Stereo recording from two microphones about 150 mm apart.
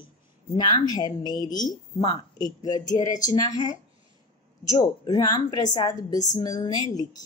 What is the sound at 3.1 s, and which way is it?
Speech, 55° left (ahead or behind).